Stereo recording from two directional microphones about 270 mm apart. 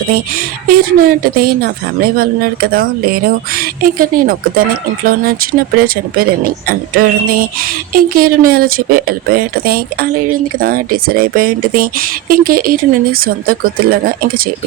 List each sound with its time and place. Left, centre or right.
0.7 s speech: right